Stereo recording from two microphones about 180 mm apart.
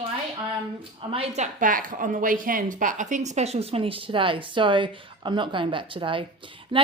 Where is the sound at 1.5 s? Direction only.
50° right (ahead or behind).